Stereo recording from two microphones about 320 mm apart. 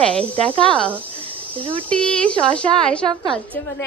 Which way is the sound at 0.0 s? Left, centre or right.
Centre.